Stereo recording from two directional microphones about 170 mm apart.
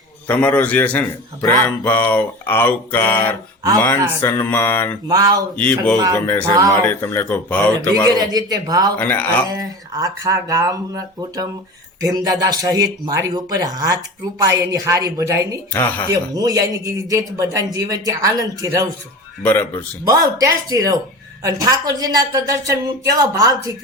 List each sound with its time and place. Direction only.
0.3 s a man's voice: 10° left (ahead or behind)
5.0 s a man's voice: 20° right (ahead or behind)
5.5 s a man's voice: 5° left (ahead or behind)
7.8 s a man's voice: 20° right (ahead or behind)
9.0 s a man's voice: 10° left (ahead or behind)
9.6 s a man's voice: 20° right (ahead or behind)
15.7 s a man's voice: 10° left (ahead or behind)
16.0 s a man's voice: 20° right (ahead or behind)
19.4 s a man's voice: 10° left (ahead or behind)
20.1 s a man's voice: 20° right (ahead or behind)